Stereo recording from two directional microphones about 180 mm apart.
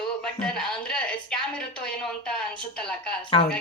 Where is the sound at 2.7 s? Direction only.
5° left (ahead or behind).